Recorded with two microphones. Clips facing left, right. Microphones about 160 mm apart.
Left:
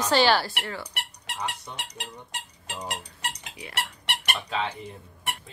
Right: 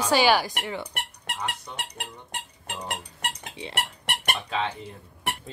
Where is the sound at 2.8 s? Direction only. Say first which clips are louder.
Right 1 dB; 60° right (ahead or behind).